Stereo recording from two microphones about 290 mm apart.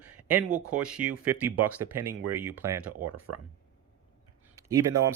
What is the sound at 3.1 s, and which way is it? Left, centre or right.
Speech, right.